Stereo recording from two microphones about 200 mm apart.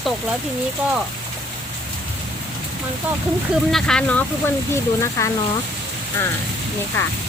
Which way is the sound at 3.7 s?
5° left (ahead or behind).